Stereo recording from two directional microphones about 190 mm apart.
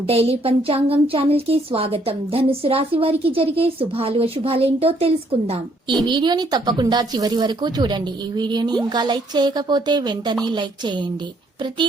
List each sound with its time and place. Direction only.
0.0 s a woman's voice: 30° right (ahead or behind)